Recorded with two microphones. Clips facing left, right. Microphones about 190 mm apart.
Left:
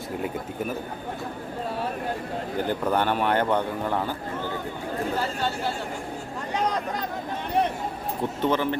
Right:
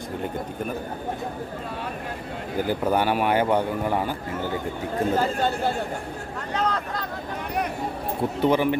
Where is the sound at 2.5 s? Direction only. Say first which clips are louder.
Right 2 dB; 10° right (ahead or behind).